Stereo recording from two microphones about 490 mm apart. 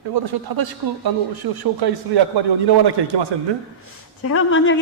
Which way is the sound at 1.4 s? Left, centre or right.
Right.